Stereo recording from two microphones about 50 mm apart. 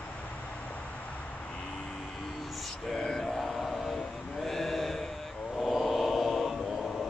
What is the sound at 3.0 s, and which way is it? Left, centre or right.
Mantra, centre.